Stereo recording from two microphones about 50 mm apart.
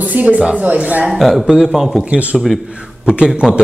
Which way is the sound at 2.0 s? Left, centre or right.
Right.